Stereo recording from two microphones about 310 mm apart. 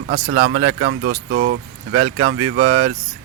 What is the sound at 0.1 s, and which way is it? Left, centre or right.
Speech, right.